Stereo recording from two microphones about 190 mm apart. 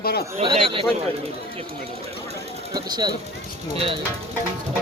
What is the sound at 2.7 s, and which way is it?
Speech, 20° right (ahead or behind).